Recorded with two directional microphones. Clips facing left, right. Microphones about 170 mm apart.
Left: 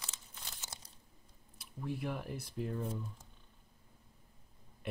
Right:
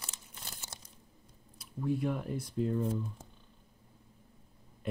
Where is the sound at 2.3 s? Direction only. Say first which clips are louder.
Right 7 dB; 25° right (ahead or behind).